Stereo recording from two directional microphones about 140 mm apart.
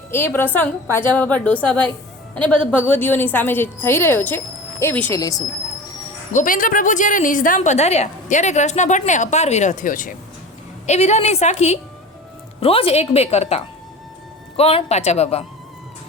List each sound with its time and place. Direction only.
0.1 s a woman's voice: 15° left (ahead or behind)
6.3 s a woman's voice: 75° left (ahead or behind)
10.8 s a woman's voice: 55° left (ahead or behind)
12.5 s a woman's voice: 40° left (ahead or behind)